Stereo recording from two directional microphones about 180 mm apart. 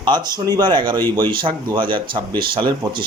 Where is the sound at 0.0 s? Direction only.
25° right (ahead or behind).